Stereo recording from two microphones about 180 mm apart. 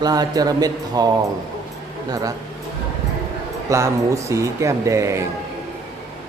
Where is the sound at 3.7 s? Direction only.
15° right (ahead or behind).